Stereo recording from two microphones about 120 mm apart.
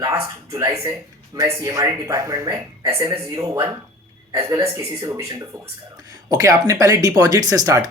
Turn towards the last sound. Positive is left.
turn(degrees=-30)  # may be behind; listen again after turning